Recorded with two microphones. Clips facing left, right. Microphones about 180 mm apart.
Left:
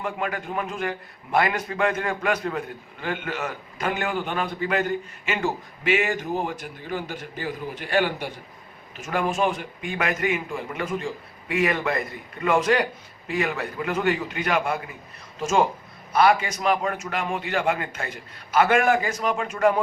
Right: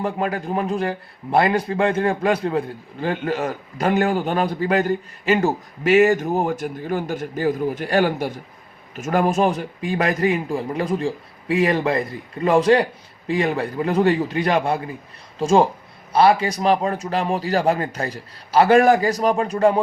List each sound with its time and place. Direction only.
0.0 s a man's voice: 35° right (ahead or behind)